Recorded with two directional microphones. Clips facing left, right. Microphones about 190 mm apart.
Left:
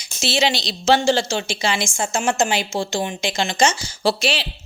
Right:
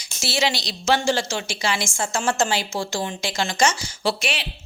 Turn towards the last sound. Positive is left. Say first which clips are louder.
# left 4 dB
turn(degrees=35)  # may be behind; listen again after turning